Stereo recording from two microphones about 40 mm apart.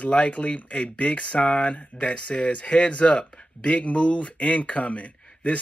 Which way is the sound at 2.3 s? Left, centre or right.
Left.